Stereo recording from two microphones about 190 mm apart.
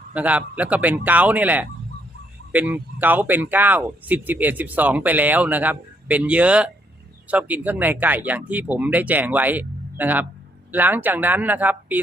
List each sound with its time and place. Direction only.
0.1 s speech: 5° right (ahead or behind)